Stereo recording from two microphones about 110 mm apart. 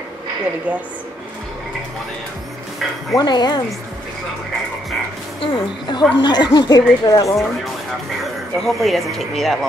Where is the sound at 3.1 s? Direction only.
40° left (ahead or behind).